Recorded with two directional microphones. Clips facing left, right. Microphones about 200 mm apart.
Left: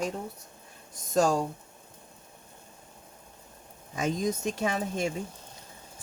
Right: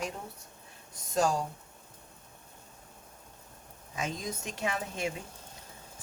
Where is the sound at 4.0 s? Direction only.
40° left (ahead or behind).